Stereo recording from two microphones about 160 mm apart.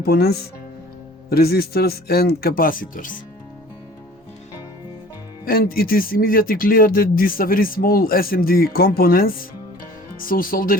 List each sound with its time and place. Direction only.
0.0 s a man's voice: 80° left; by 3.2 s 55° left (ahead or behind)
5.5 s speech: 65° left (ahead or behind)